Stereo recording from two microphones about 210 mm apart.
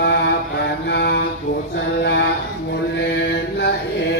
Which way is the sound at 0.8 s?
50° left (ahead or behind).